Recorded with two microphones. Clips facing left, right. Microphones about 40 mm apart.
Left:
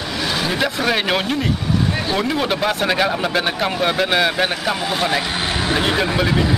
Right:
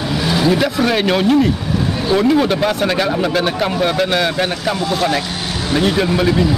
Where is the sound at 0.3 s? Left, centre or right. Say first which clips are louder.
Right 6 dB; centre.